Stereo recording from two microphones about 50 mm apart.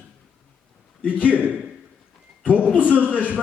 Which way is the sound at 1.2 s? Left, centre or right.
Right.